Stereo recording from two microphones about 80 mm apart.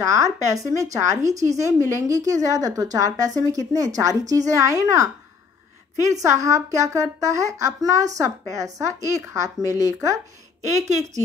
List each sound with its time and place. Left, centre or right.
0.0 s speech: right
6.1 s speech: right